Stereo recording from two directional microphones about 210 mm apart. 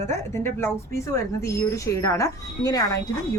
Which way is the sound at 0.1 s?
10° left (ahead or behind).